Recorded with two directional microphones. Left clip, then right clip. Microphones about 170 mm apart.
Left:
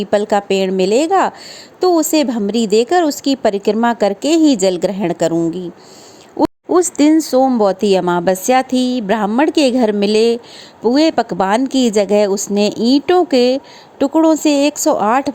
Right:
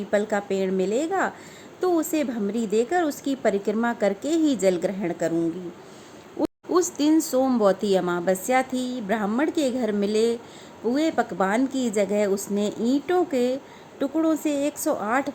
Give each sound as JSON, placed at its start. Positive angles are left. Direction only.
{"t": 0.1, "sound": "speech", "side_deg": 45}
{"t": 6.7, "sound": "speech", "side_deg": 40}